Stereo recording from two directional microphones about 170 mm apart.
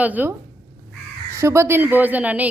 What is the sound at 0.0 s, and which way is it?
Speech, 10° right (ahead or behind).